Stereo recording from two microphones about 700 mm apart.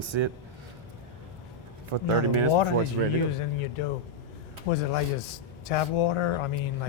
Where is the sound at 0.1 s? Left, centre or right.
Right.